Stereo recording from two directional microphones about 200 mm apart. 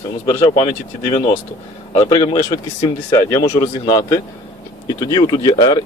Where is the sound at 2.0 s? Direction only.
20° left (ahead or behind).